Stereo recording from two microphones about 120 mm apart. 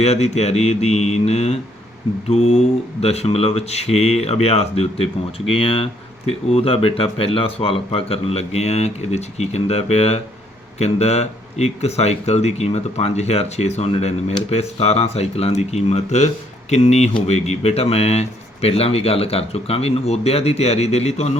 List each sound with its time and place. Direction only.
0.0 s speech: 65° left (ahead or behind)